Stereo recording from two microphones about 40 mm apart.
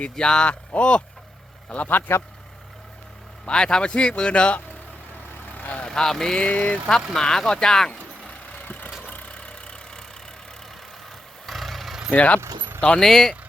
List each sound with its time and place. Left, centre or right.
0.0 s speech: left
2.1 s speech: left
3.4 s speech: centre
5.5 s vehicle: left
5.8 s speech: centre
6.5 s speech: left
6.8 s speech: centre
8.3 s vehicle: left
11.4 s vehicle: centre
12.1 s speech: left
12.4 s vehicle: right
13.0 s speech: centre